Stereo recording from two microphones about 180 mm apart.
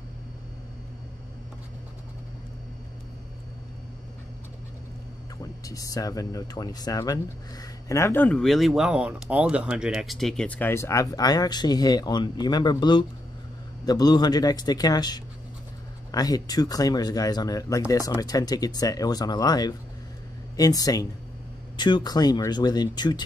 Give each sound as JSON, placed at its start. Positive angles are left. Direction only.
{"t": 5.4, "sound": "speech", "side_deg": 20}